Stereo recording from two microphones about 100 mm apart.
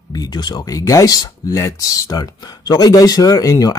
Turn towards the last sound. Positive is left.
turn(degrees=40)  # may be behind; listen again after turning